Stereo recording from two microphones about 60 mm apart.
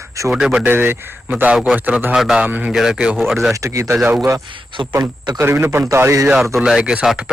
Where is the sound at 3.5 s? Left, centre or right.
Right.